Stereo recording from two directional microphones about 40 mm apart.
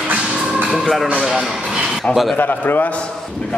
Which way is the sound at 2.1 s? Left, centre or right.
Centre.